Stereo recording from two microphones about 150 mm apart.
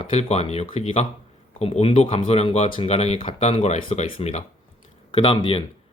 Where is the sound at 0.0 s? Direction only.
45° left (ahead or behind).